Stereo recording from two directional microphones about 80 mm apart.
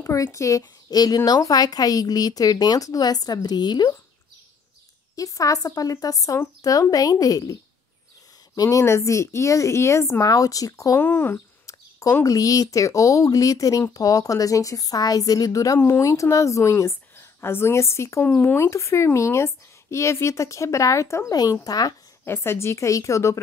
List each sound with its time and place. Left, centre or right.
0.0 s speech: left
5.1 s speech: left
8.5 s speech: left
10.2 s speech: left
11.0 s speech: left
11.6 s bird: left
12.3 s speech: left
21.3 s speech: left
22.2 s speech: left